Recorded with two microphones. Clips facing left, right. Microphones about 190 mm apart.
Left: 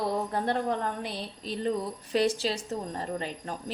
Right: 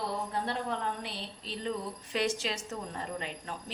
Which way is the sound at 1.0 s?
45° left (ahead or behind).